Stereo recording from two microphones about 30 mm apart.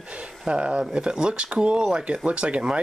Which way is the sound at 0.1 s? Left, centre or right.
Right.